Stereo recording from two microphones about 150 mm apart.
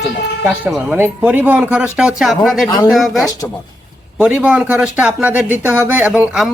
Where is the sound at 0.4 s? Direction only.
5° right (ahead or behind).